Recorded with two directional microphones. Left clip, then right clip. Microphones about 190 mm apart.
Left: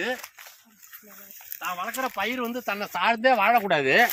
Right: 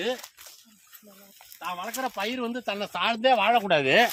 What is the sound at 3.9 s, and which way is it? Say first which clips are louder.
Speech: left 1 dB; 55° right (ahead or behind).